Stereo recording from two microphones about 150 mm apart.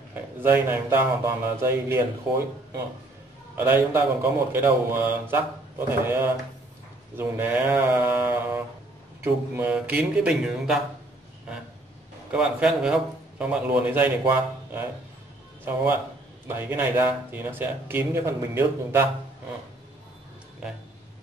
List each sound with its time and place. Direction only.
0.1 s speech: 15° right (ahead or behind)
12.3 s speech: 5° right (ahead or behind)